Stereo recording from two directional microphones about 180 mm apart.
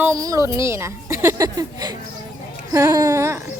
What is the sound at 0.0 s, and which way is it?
A child's voice, 20° right (ahead or behind).